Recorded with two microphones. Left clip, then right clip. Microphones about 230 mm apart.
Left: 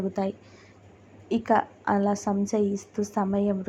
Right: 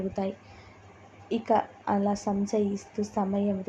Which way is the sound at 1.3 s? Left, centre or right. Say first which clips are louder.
Left 2 dB; centre.